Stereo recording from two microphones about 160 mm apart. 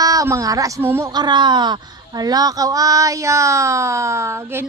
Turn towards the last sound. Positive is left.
turn(degrees=-15)  # may be behind; listen again after turning